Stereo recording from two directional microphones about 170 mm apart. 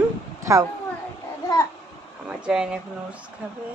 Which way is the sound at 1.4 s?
20° left (ahead or behind).